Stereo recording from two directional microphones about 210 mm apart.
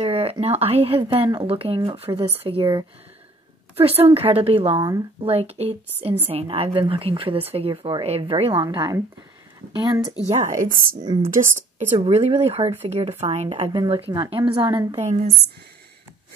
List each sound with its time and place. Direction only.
0.0 s a woman's voice: 30° right (ahead or behind)
4.7 s speech: 15° right (ahead or behind)
5.2 s a woman's voice: 30° right (ahead or behind)
10.2 s a woman's voice: 35° right (ahead or behind)
15.0 s a woman's voice: 35° right (ahead or behind)